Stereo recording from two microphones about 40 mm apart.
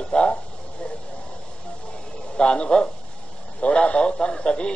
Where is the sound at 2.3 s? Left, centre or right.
Left.